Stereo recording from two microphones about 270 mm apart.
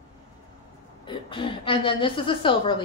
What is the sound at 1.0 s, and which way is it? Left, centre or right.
A woman's voice, centre.